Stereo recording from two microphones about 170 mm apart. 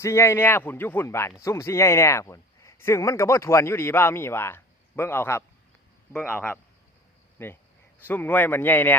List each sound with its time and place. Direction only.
0.0 s speech: 15° left (ahead or behind)